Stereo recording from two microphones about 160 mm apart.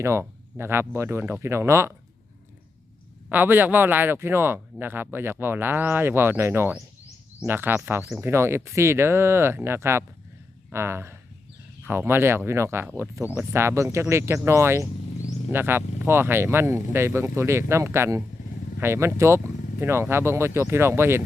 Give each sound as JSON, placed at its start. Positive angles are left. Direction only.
{"t": 0.0, "sound": "speech", "side_deg": -15}
{"t": 3.2, "sound": "speech", "side_deg": -10}